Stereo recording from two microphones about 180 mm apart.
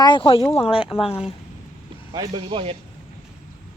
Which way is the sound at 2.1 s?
25° right (ahead or behind).